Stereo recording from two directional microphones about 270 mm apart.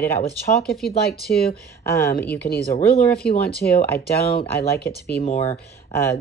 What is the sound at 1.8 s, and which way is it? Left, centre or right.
Speech, centre.